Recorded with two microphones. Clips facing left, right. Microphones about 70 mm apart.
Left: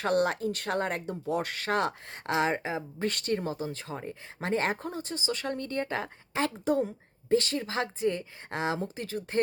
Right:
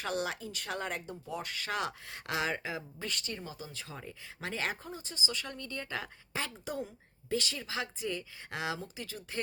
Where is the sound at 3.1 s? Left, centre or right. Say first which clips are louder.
Left 12 dB; left.